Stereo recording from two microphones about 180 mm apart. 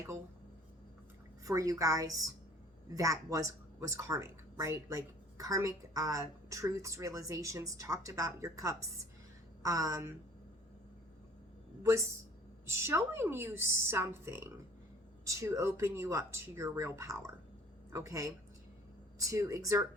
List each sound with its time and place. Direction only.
1.5 s a woman's voice: 20° right (ahead or behind)
11.8 s speech: 15° right (ahead or behind)